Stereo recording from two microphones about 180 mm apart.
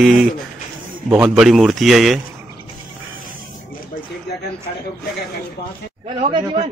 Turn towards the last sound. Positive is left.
turn(degrees=-30)  # may be behind; listen again after turning